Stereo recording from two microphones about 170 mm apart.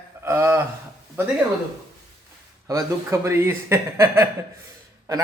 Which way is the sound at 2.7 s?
20° right (ahead or behind).